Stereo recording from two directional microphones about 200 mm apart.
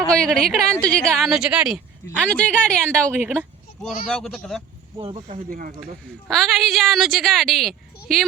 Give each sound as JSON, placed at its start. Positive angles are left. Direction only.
{"t": 0.0, "sound": "speech", "side_deg": 5}
{"t": 2.2, "sound": "speech", "side_deg": 5}
{"t": 2.8, "sound": "speech", "side_deg": -10}
{"t": 4.0, "sound": "speech", "side_deg": 0}
{"t": 4.9, "sound": "speech", "side_deg": -30}
{"t": 5.4, "sound": "speech", "side_deg": -45}
{"t": 6.2, "sound": "speech", "side_deg": 0}